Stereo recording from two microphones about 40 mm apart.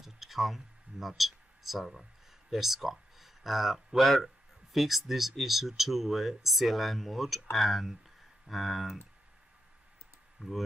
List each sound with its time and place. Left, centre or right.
0.0 s a sound: centre
2.5 s speech: centre
10.4 s speech: right